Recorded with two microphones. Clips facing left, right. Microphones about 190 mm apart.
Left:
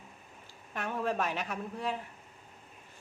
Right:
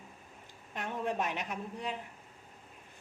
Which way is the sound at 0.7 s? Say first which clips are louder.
Left 2 dB; 20° right (ahead or behind).